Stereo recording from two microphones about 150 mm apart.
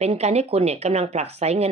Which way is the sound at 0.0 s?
45° right (ahead or behind).